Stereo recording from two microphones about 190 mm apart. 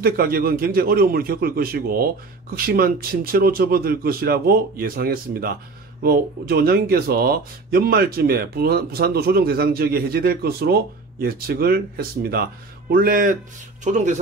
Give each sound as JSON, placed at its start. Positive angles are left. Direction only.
{"t": 0.0, "sound": "speech", "side_deg": -50}